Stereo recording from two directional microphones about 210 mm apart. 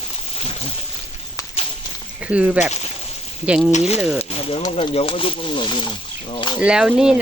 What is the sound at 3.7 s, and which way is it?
Speech, 30° left (ahead or behind).